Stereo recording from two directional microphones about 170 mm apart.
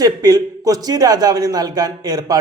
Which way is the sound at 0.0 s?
20° right (ahead or behind).